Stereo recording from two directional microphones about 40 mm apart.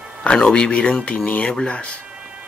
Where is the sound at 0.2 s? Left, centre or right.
Left.